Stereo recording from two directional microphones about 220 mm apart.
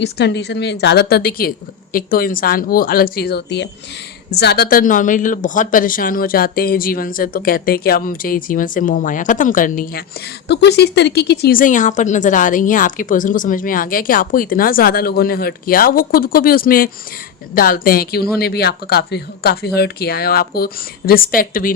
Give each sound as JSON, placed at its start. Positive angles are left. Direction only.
{"t": 0.0, "sound": "speech", "side_deg": 50}
{"t": 10.5, "sound": "speech", "side_deg": 50}